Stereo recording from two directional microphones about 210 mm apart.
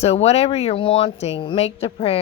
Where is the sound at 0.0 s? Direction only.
30° left (ahead or behind).